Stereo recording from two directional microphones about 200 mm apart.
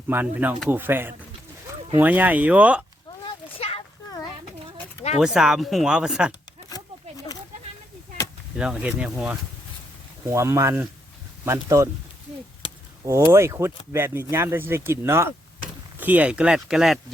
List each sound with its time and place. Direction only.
0.1 s speech: 10° right (ahead or behind)
3.2 s a sound: 30° left (ahead or behind)
5.2 s speech: 5° right (ahead or behind)
8.5 s speech: 5° right (ahead or behind)
13.3 s speech: 15° right (ahead or behind)